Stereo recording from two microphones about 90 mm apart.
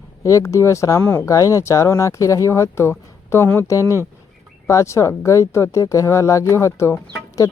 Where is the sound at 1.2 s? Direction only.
35° left (ahead or behind).